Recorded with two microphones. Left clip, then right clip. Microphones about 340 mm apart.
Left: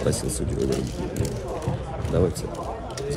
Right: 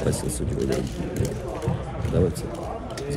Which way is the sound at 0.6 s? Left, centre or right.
Right.